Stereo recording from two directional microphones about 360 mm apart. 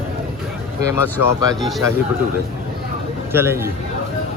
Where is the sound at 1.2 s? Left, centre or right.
Left.